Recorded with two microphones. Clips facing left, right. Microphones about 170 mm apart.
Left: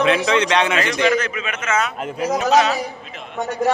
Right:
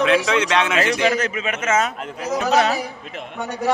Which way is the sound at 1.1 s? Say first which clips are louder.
Left 1 dB; 40° right (ahead or behind).